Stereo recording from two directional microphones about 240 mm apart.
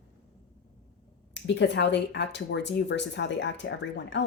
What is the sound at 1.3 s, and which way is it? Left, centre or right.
Speech, left.